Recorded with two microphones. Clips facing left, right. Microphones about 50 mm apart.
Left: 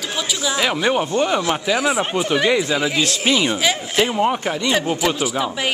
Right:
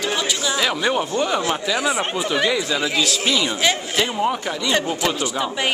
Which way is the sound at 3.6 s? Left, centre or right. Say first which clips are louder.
Left 1 dB; centre.